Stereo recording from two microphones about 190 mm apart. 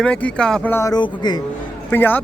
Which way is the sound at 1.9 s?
10° left (ahead or behind).